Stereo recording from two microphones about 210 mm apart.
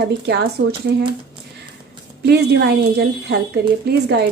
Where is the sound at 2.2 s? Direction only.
50° right (ahead or behind).